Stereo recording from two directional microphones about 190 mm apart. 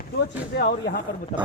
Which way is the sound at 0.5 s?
60° left (ahead or behind).